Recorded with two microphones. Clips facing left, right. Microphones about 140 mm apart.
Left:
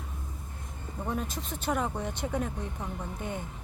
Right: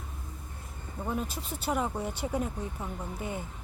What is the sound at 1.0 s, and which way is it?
Speech, 5° right (ahead or behind).